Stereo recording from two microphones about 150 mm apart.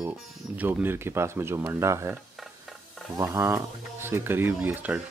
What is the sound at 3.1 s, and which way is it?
Speech, 20° right (ahead or behind).